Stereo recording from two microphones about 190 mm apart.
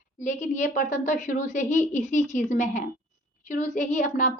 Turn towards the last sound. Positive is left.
turn(degrees=40)  # may be behind; listen again after turning